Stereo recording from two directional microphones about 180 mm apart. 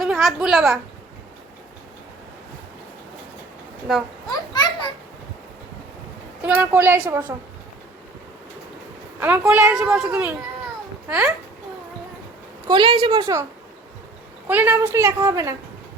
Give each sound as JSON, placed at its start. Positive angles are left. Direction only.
{"t": 0.0, "sound": "a child's voice", "side_deg": 0}
{"t": 3.9, "sound": "a child's voice", "side_deg": 0}
{"t": 4.3, "sound": "a child's voice", "side_deg": 25}
{"t": 6.4, "sound": "a child's voice", "side_deg": -10}
{"t": 9.2, "sound": "a child's voice", "side_deg": -10}
{"t": 12.6, "sound": "a woman's voice", "side_deg": -30}
{"t": 14.4, "sound": "a child's voice", "side_deg": -10}